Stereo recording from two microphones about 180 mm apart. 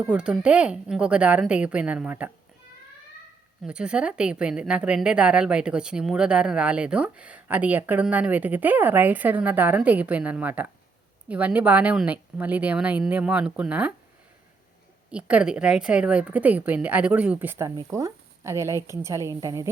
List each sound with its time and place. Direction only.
0.0 s speech: 5° right (ahead or behind)
3.6 s a woman's voice: 5° right (ahead or behind)
15.1 s a woman's voice: 5° right (ahead or behind)